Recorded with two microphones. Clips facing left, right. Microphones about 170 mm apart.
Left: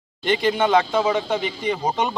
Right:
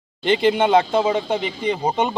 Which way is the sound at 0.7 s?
25° right (ahead or behind).